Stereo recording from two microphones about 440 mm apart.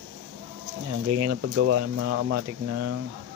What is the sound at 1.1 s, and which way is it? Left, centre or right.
Speech, right.